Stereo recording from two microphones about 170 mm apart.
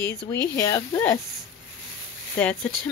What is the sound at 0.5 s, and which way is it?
Speech, 15° left (ahead or behind).